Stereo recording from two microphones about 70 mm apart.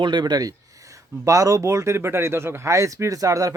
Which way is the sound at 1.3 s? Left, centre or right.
Right.